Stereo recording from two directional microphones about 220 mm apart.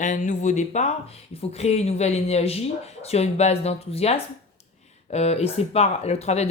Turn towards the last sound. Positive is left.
turn(degrees=30)  # may be behind; listen again after turning